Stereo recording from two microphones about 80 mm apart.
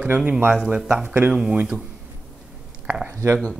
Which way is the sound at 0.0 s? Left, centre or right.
Centre.